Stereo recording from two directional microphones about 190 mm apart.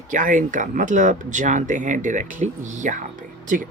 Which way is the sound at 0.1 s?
45° right (ahead or behind).